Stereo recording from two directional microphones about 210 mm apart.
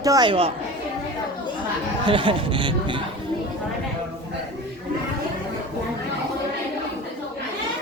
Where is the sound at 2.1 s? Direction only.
25° right (ahead or behind).